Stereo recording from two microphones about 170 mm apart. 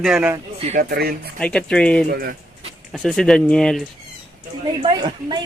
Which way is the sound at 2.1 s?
60° right (ahead or behind).